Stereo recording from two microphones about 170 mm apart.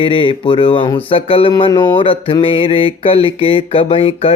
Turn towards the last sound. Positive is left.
turn(degrees=35)  # may be behind; listen again after turning